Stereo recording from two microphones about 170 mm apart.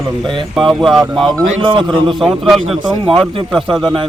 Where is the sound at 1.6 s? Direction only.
30° right (ahead or behind).